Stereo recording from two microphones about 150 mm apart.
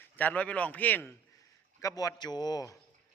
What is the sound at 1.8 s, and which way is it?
Speech, 25° left (ahead or behind).